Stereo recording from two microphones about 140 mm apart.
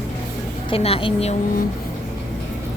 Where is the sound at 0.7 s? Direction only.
45° left (ahead or behind).